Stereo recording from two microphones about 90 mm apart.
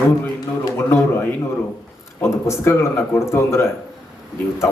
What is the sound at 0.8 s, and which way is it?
A man's voice, 25° left (ahead or behind).